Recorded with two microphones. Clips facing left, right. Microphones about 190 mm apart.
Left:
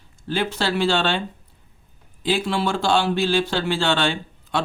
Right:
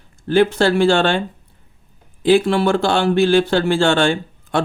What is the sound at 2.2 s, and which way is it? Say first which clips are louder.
A man's voice: right 8 dB; 55° right (ahead or behind).